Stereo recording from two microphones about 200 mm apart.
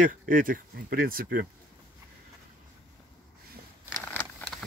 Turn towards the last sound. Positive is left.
turn(degrees=5)  # may be behind; listen again after turning